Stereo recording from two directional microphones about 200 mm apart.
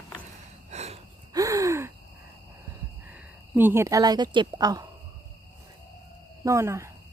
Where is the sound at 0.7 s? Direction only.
35° right (ahead or behind).